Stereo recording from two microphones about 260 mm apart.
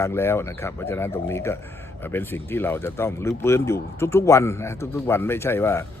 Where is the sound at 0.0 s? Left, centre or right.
Centre.